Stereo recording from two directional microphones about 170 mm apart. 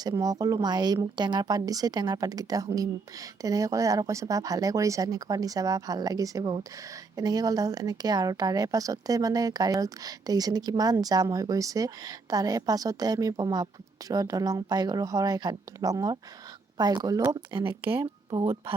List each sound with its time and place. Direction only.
0.0 s a woman's voice: 20° right (ahead or behind)
17.6 s speech: 30° right (ahead or behind)